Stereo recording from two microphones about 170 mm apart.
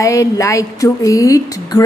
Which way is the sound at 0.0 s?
20° left (ahead or behind).